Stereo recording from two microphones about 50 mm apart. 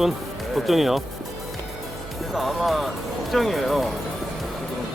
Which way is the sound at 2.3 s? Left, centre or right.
Centre.